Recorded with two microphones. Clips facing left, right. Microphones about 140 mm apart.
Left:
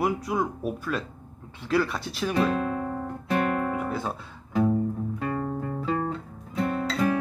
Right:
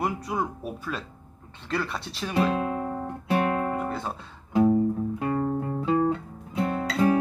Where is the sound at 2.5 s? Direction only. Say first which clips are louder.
Even; 15° right (ahead or behind).